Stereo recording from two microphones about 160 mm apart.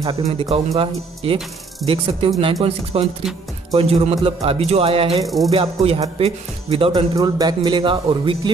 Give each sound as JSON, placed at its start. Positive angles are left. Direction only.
{"t": 0.3, "sound": "a man's voice", "side_deg": -35}
{"t": 5.2, "sound": "music", "side_deg": 0}
{"t": 5.5, "sound": "a man's voice", "side_deg": -35}
{"t": 7.2, "sound": "a man's voice", "side_deg": -25}